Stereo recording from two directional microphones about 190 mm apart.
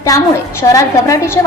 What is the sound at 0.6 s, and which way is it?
Speech, 15° left (ahead or behind).